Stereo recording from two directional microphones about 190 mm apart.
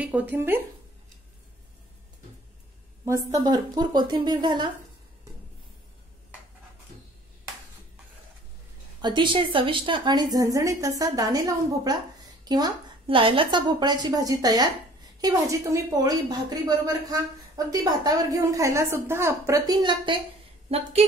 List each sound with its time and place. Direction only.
0.0 s a woman's voice: 10° right (ahead or behind)
3.1 s a woman's voice: 15° right (ahead or behind)
9.0 s a woman's voice: 25° right (ahead or behind)